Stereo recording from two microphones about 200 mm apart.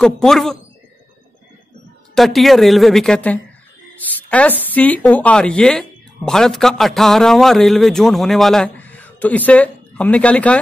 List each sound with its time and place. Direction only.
0.0 s speech: centre (ahead or behind)
2.1 s a woman's voice: centre (ahead or behind)